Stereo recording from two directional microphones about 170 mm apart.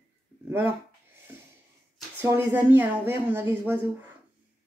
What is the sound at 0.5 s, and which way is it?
Speech, 10° right (ahead or behind).